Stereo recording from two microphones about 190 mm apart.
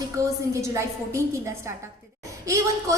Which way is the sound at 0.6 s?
15° right (ahead or behind).